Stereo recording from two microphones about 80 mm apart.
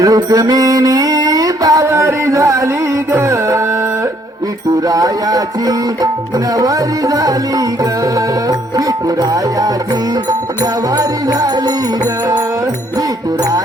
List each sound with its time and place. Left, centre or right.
0.0 s music: right
1.9 s a sound: right
3.1 s music: right
4.9 s music: right
10.9 s music: right